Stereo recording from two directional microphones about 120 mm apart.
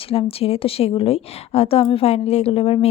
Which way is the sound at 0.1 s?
55° left (ahead or behind).